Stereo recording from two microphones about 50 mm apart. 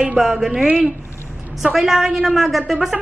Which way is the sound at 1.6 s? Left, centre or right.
Centre.